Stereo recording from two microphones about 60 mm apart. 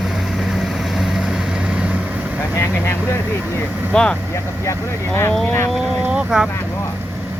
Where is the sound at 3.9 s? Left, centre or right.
Centre.